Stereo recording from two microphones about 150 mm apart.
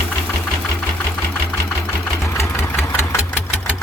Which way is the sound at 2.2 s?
20° left (ahead or behind).